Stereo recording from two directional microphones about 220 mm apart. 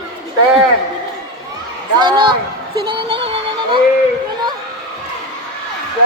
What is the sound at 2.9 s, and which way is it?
Music, 25° right (ahead or behind).